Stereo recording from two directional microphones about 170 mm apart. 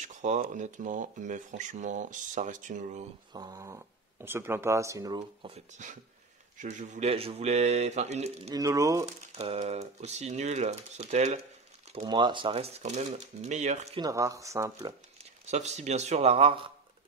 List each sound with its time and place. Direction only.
0.0 s speech: 45° right (ahead or behind)
3.3 s speech: 20° right (ahead or behind)
5.5 s speech: 45° right (ahead or behind)
8.5 s speech: 20° right (ahead or behind)
9.0 s speech: 40° right (ahead or behind)
11.9 s speech: 30° right (ahead or behind)
14.0 s speech: 20° right (ahead or behind)
15.4 s speech: 40° right (ahead or behind)